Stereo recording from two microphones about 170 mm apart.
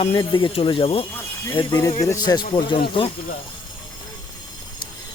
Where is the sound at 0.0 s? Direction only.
30° left (ahead or behind).